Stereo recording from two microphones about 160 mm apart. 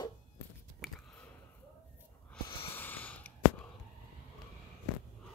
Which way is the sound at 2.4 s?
30° left (ahead or behind).